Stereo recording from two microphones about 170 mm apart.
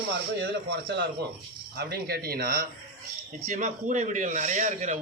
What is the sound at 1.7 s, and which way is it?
Speech, 70° right (ahead or behind).